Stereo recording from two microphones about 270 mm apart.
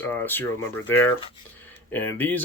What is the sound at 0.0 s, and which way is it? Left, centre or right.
Speech, centre.